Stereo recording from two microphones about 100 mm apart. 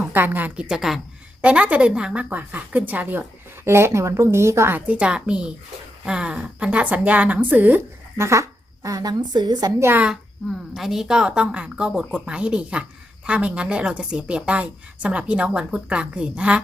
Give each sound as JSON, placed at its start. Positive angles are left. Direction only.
{"t": 0.0, "sound": "a woman's voice", "side_deg": -20}
{"t": 1.4, "sound": "a woman's voice", "side_deg": -15}
{"t": 4.9, "sound": "a woman's voice", "side_deg": -10}
{"t": 8.2, "sound": "a woman's voice", "side_deg": -30}
{"t": 9.8, "sound": "a woman's voice", "side_deg": -20}
{"t": 10.1, "sound": "a woman's voice", "side_deg": 0}